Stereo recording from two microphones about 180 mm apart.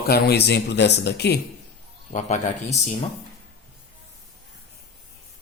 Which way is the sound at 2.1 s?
40° left (ahead or behind).